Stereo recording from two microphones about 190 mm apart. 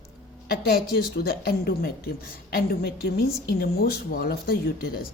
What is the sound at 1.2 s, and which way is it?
A woman's voice, 55° left (ahead or behind).